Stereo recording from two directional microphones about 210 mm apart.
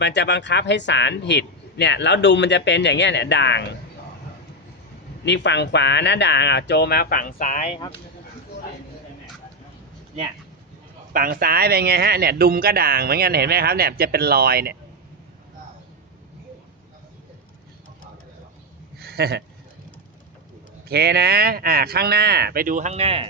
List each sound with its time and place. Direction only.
0.0 s speech: 55° left (ahead or behind)
5.2 s speech: 55° left (ahead or behind); by 7.7 s 40° left (ahead or behind)
11.1 s speech: 40° right (ahead or behind)
18.9 s a sound: 50° right (ahead or behind)
20.8 s speech: 50° right (ahead or behind); by 23.2 s 30° right (ahead or behind)